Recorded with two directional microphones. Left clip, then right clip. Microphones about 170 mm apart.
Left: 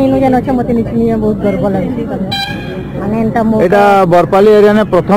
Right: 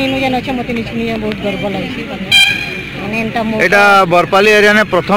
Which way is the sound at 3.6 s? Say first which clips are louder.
Even; 10° right (ahead or behind).